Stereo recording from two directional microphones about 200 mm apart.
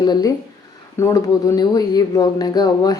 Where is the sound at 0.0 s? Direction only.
20° left (ahead or behind).